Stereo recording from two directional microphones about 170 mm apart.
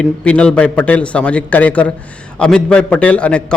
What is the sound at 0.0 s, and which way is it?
A man's voice, 5° left (ahead or behind).